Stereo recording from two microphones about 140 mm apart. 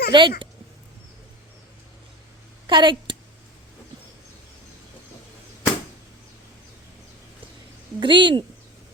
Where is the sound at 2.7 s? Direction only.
35° right (ahead or behind).